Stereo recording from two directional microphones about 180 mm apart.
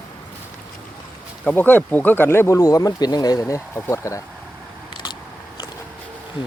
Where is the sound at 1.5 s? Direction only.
10° left (ahead or behind).